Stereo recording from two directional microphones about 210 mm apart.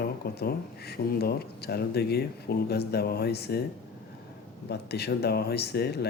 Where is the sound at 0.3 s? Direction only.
50° left (ahead or behind).